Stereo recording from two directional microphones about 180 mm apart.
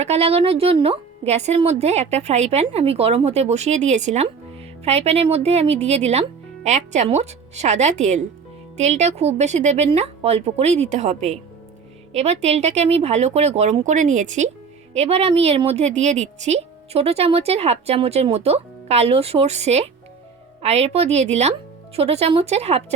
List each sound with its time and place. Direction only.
0.0 s a woman's voice: 35° right (ahead or behind)